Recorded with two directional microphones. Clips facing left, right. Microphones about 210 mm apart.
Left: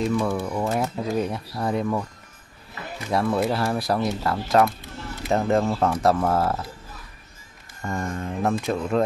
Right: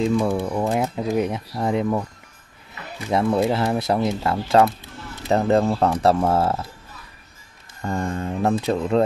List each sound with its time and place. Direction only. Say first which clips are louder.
0.0 s speech: right 3 dB; 20° right (ahead or behind)
3.1 s speech: right 3 dB; 20° right (ahead or behind)
7.8 s speech: right 3 dB; 35° right (ahead or behind)